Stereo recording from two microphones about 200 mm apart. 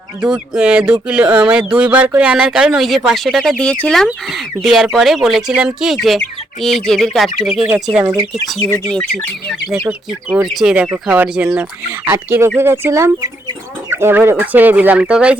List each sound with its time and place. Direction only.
0.2 s a sound: 5° right (ahead or behind)
8.7 s speech: 5° left (ahead or behind)
9.6 s speech: 5° right (ahead or behind)